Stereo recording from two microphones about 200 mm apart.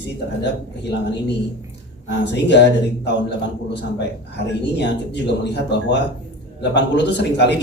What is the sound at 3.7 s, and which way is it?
Speech, 60° left (ahead or behind).